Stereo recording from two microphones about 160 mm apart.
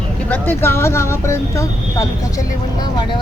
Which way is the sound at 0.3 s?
10° left (ahead or behind).